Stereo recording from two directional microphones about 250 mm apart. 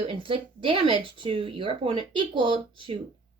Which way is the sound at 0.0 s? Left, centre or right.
Right.